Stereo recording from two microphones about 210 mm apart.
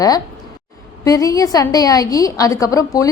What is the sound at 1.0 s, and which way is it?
A woman's voice, 15° left (ahead or behind).